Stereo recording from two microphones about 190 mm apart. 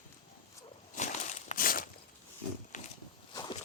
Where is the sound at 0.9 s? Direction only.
40° left (ahead or behind).